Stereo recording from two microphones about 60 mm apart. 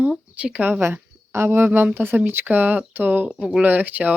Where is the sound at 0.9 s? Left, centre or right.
Right.